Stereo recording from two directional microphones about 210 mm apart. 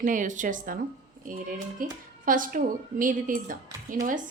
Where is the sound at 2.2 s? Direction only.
40° right (ahead or behind).